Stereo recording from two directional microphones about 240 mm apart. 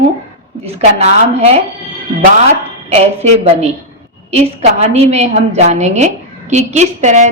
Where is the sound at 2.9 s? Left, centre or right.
Right.